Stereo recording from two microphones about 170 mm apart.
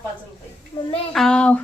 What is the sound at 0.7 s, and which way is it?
Speech, 35° left (ahead or behind).